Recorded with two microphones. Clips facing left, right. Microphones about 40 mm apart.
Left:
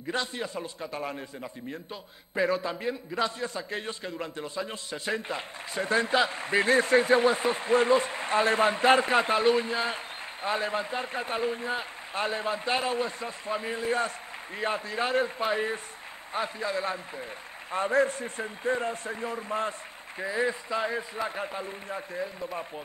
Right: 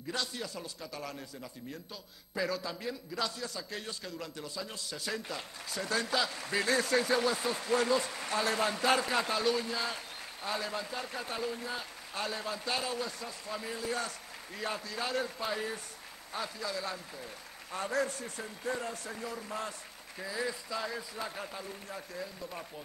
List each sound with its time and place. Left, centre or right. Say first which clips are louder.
0.1 s a man's voice: left 6 dB; left